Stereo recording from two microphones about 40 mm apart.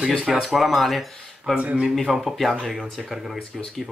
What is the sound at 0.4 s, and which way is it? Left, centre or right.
A man's voice, centre.